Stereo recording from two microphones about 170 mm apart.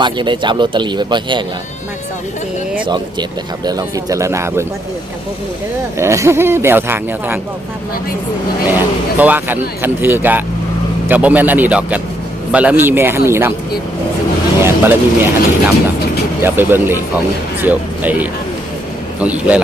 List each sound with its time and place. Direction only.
0.0 s speech: 25° right (ahead or behind)
2.8 s speech: 25° right (ahead or behind)
6.0 s speech: 15° right (ahead or behind)
9.1 s speech: 10° right (ahead or behind)
14.6 s speech: 15° right (ahead or behind)